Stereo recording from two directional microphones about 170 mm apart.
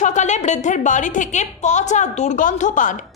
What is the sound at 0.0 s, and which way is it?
A woman's voice, 45° left (ahead or behind).